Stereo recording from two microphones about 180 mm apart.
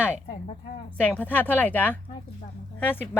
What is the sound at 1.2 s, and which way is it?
Speech, 10° left (ahead or behind).